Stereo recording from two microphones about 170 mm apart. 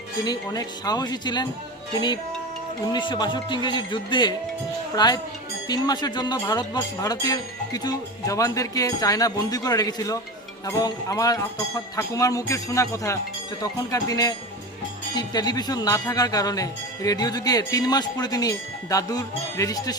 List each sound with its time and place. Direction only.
0.3 s speech: 25° left (ahead or behind)
2.8 s speech: 25° left (ahead or behind)